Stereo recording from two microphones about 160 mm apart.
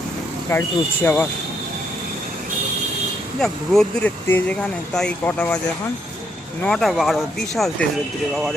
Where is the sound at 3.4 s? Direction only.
5° left (ahead or behind).